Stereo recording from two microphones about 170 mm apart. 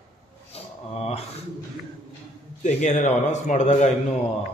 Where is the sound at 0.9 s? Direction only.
35° left (ahead or behind).